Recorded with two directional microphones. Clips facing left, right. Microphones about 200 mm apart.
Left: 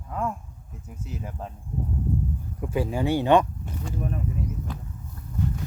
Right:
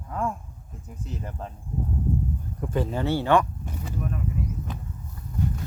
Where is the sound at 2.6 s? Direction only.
10° left (ahead or behind).